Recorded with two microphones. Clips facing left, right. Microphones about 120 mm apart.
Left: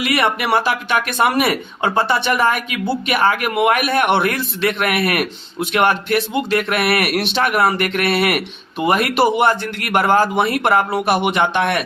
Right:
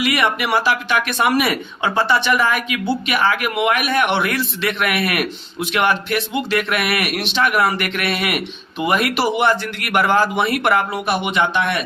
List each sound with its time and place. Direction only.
0.1 s speech: 35° left (ahead or behind)
7.6 s speech: 35° left (ahead or behind)
8.8 s speech: 30° left (ahead or behind)
9.5 s speech: 45° left (ahead or behind)
10.3 s speech: 30° left (ahead or behind)
11.2 s a man's voice: 55° left (ahead or behind)